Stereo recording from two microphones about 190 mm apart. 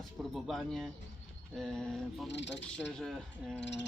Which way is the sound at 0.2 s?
Centre (ahead or behind).